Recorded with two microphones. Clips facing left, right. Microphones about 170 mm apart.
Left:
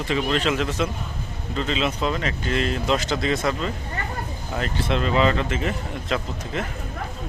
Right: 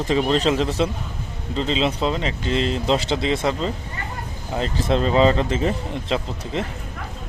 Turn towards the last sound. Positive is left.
turn(degrees=-25)  # may be behind; listen again after turning